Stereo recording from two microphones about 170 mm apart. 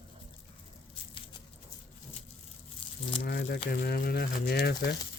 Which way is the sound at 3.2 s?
70° left (ahead or behind).